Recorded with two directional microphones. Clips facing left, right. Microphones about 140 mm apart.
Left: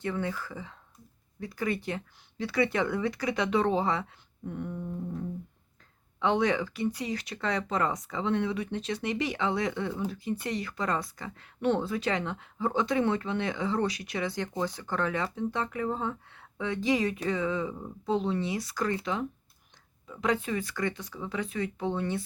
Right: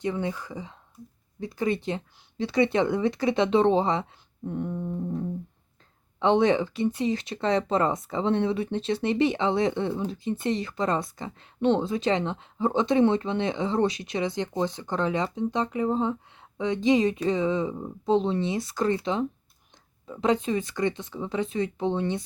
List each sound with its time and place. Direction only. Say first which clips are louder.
0.0 s speech: right 3 dB; 20° right (ahead or behind)